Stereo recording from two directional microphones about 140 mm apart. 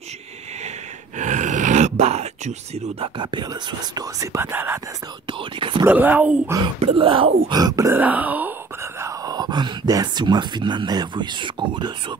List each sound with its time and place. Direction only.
1.1 s a sound: 60° right (ahead or behind)
3.2 s speech: 30° right (ahead or behind); by 4.7 s 15° right (ahead or behind)
5.2 s speech: 35° right (ahead or behind)
5.9 s speech: 10° right (ahead or behind)
6.8 s speech: 45° right (ahead or behind); by 8.5 s 10° right (ahead or behind)
9.0 s speech: 25° right (ahead or behind)